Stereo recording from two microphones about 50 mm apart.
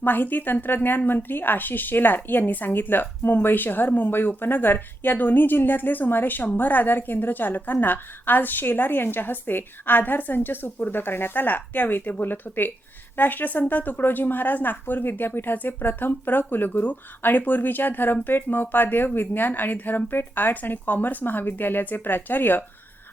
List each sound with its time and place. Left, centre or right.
0.0 s a woman's voice: left